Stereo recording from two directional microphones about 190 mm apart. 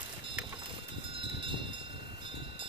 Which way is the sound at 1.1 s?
25° right (ahead or behind).